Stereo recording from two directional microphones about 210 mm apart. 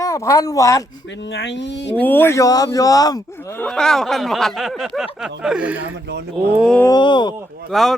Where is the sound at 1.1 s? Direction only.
55° left (ahead or behind).